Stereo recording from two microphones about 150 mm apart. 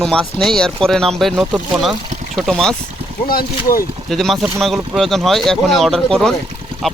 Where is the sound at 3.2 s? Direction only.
75° left (ahead or behind).